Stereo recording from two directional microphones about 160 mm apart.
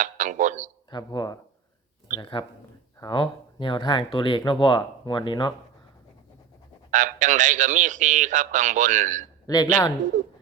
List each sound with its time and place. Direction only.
0.0 s speech: 50° right (ahead or behind)
0.9 s speech: 25° left (ahead or behind)
6.9 s a man's voice: 50° right (ahead or behind)
9.5 s speech: 25° left (ahead or behind)
10.1 s a sound: 50° right (ahead or behind)